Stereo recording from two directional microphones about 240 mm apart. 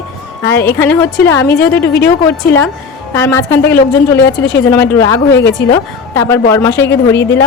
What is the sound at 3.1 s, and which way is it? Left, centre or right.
Speech, centre.